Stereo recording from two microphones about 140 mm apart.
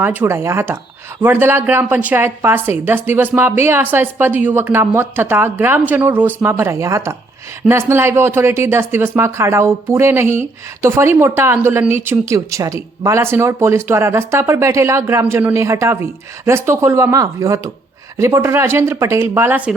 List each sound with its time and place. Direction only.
0.0 s speech: 15° right (ahead or behind)